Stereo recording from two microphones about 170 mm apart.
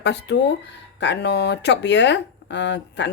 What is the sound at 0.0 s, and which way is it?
Speech, 90° left.